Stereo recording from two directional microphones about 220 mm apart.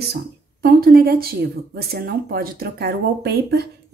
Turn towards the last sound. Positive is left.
turn(degrees=-45)  # may be behind; listen again after turning